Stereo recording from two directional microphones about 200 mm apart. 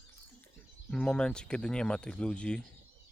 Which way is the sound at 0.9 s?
5° left (ahead or behind).